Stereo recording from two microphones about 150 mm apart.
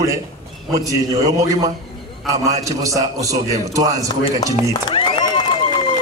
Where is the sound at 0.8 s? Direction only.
25° right (ahead or behind).